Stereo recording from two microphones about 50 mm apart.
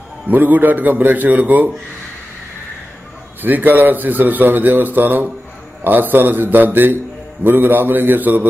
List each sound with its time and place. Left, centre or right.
0.3 s speech: right
3.4 s a man's voice: right